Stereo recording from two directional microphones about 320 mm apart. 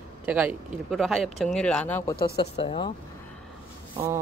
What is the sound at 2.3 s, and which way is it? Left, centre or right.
Speech, centre.